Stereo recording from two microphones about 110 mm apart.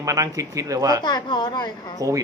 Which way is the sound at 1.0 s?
40° left (ahead or behind).